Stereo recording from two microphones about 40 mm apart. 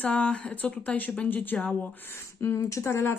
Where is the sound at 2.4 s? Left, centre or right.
Left.